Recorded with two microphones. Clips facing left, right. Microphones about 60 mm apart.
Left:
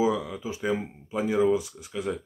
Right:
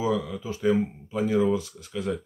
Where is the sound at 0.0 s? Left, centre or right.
Centre.